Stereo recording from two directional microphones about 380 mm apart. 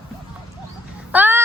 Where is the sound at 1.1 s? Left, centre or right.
Centre.